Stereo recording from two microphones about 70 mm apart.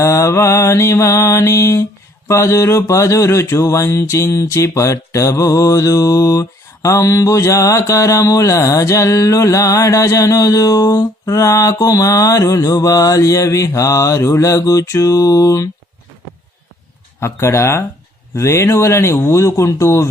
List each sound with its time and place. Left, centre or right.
0.0 s mantra: left
17.2 s speech: left
18.3 s mantra: left